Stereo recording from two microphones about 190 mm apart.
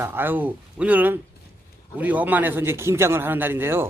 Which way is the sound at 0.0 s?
10° right (ahead or behind).